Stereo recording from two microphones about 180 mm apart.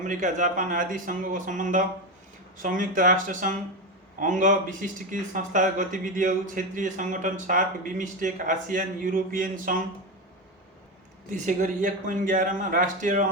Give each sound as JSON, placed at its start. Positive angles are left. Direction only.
{"t": 0.0, "sound": "a man's voice", "side_deg": -45}
{"t": 11.3, "sound": "a man's voice", "side_deg": -45}